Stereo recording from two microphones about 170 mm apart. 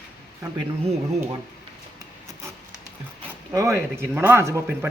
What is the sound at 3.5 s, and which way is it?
Speech, 20° right (ahead or behind).